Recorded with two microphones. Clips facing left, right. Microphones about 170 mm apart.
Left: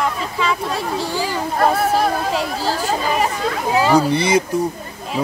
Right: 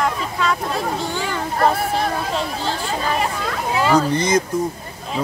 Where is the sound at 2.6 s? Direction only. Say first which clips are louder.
Left 4 dB; 40° left (ahead or behind).